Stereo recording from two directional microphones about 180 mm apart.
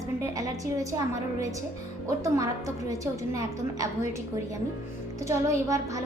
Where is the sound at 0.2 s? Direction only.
15° right (ahead or behind).